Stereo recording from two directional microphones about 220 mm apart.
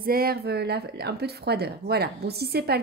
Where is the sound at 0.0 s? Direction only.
45° right (ahead or behind).